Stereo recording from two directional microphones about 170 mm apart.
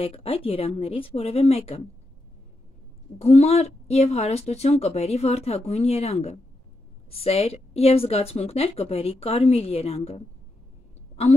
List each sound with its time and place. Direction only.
0.0 s a woman's voice: 35° left (ahead or behind)
3.2 s a woman's voice: 40° left (ahead or behind)